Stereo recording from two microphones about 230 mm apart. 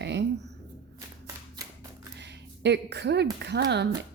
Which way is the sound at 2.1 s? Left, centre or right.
Right.